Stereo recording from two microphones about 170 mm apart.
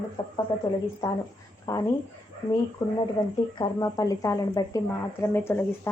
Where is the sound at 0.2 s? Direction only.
30° left (ahead or behind).